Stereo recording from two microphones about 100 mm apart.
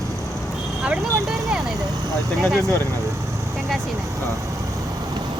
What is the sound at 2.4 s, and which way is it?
Speech, 5° left (ahead or behind).